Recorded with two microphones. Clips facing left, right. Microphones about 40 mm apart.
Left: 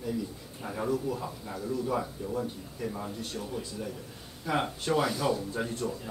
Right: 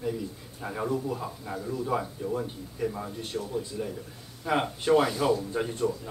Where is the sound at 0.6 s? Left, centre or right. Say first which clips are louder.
Right 1 dB; centre.